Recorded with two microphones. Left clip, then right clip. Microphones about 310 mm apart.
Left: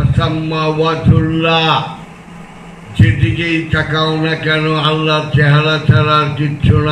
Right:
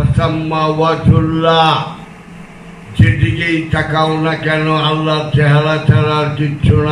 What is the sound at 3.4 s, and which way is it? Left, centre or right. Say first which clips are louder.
Speech: left 1 dB; centre.